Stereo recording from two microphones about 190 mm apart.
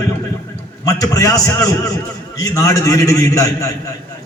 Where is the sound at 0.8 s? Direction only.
20° left (ahead or behind).